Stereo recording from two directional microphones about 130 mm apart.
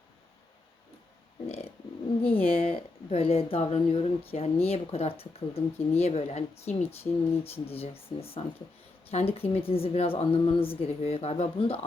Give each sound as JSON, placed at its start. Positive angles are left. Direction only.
{"t": 2.2, "sound": "speech", "side_deg": 45}